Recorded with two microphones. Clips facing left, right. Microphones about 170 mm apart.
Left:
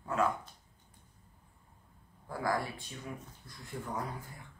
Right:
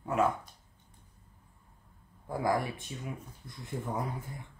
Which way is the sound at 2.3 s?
20° right (ahead or behind).